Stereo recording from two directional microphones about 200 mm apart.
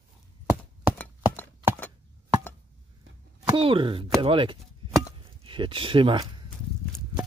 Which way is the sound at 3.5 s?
25° right (ahead or behind).